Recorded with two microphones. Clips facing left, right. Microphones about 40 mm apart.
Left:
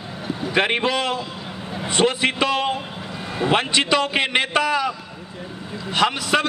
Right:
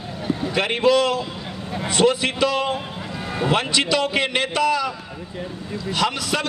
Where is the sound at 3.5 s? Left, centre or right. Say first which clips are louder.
Left 2 dB; left.